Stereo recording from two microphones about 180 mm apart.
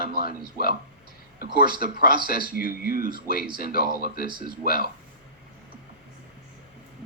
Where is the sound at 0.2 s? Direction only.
55° left (ahead or behind).